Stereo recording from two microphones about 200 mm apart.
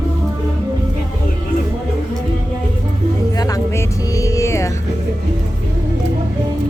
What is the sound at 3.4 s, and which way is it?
Music, 15° left (ahead or behind).